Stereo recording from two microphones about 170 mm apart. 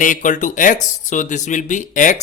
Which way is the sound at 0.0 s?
50° left (ahead or behind).